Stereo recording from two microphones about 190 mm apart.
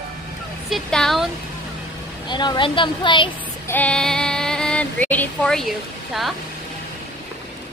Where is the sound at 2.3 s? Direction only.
25° left (ahead or behind).